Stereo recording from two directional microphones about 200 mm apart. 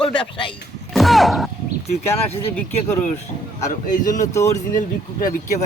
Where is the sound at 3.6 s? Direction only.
40° left (ahead or behind).